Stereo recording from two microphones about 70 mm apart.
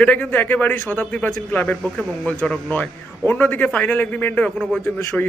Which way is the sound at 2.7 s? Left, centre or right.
Left.